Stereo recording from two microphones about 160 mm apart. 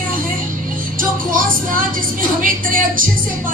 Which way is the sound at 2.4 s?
60° right (ahead or behind).